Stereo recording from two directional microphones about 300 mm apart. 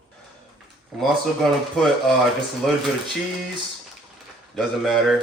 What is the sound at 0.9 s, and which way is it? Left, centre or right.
Speech, centre.